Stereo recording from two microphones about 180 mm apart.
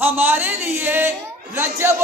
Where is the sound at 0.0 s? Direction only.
10° right (ahead or behind).